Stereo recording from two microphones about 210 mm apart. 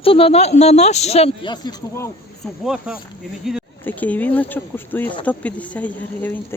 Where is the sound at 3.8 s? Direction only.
10° left (ahead or behind).